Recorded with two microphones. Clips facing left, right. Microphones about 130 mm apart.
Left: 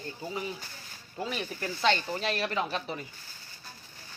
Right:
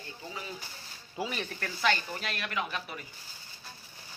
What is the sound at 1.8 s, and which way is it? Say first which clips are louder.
Speech: left 3 dB; 30° left (ahead or behind).